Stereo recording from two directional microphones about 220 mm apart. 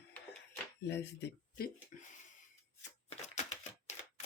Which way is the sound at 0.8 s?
50° left (ahead or behind).